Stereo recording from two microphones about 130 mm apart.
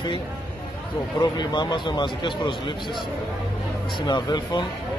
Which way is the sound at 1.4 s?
35° left (ahead or behind).